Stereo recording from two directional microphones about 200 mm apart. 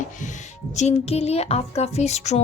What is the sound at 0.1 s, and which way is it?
Speech, 40° left (ahead or behind).